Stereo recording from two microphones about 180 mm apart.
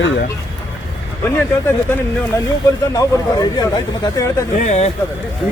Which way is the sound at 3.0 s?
20° left (ahead or behind).